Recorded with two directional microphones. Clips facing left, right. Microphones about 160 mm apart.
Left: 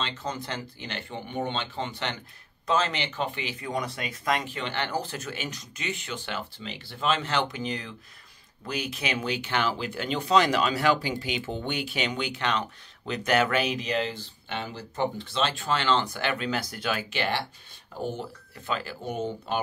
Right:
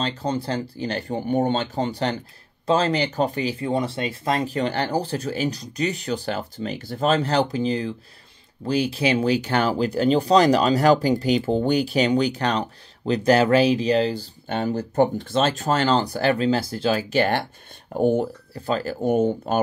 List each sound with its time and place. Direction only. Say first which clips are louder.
0.0 s speech: right 8 dB; 35° right (ahead or behind); by 18.3 s 50° right (ahead or behind)
18.5 s speech: right 8 dB; 40° right (ahead or behind)